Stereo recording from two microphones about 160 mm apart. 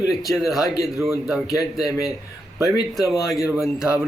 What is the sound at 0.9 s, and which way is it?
Speech, 15° right (ahead or behind).